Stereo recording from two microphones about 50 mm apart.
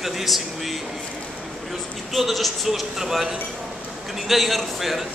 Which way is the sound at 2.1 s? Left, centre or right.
Centre.